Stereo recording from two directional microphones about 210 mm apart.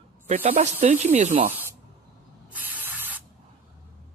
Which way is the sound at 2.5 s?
10° right (ahead or behind).